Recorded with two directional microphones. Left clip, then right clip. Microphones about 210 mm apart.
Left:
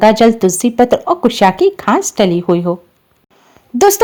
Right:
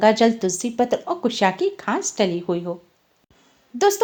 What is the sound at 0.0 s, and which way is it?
Speech, 35° left (ahead or behind).